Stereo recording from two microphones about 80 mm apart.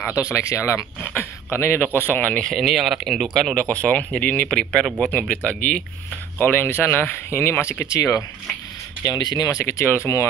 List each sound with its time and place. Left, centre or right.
0.2 s speech: left
1.9 s speech: right
2.1 s speech: centre
2.4 s speech: centre
3.7 s speech: centre; by 8.2 s left
9.0 s speech: left